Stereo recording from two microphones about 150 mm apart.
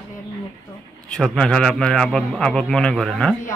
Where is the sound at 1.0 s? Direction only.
5° left (ahead or behind).